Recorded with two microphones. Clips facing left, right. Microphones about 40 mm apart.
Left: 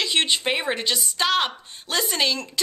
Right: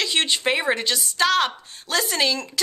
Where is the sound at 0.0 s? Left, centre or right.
Centre.